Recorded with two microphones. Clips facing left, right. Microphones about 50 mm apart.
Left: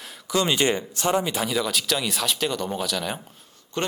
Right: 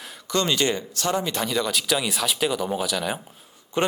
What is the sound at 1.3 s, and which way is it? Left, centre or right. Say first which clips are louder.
Speech: even; centre.